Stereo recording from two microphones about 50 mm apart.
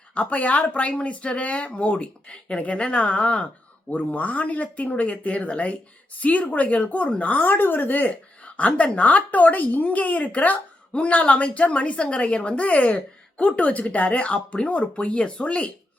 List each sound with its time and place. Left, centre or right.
0.1 s a woman's voice: left